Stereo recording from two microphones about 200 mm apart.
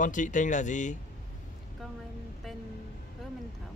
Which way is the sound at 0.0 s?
40° left (ahead or behind).